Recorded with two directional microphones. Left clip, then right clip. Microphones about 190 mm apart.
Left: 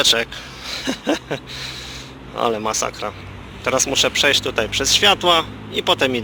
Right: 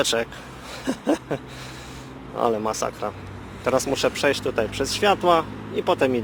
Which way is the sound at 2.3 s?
10° right (ahead or behind).